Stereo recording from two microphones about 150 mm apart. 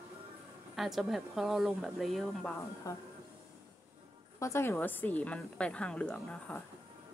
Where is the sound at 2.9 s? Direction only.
20° left (ahead or behind).